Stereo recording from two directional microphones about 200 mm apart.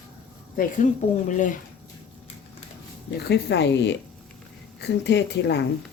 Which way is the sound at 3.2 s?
55° left (ahead or behind).